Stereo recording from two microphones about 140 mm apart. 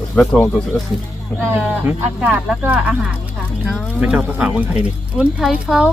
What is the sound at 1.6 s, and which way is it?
Speech, 10° right (ahead or behind).